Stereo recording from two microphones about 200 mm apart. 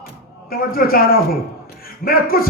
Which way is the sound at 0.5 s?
45° left (ahead or behind).